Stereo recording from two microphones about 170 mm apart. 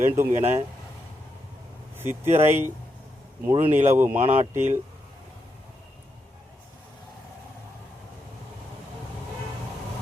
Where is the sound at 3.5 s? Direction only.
30° right (ahead or behind).